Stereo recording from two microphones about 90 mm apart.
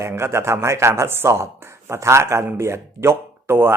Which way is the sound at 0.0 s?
30° right (ahead or behind).